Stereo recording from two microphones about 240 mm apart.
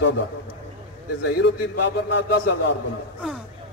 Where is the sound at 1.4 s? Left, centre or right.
Left.